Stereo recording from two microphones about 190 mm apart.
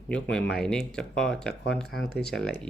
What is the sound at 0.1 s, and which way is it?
Speech, 5° left (ahead or behind).